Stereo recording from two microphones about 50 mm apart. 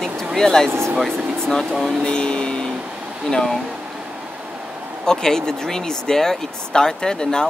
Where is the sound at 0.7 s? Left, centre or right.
Right.